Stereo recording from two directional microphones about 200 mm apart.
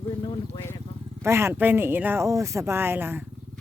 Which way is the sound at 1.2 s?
10° right (ahead or behind).